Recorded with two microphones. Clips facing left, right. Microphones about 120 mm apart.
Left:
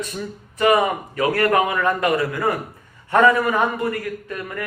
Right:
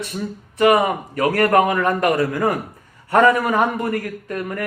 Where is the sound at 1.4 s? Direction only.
45° right (ahead or behind).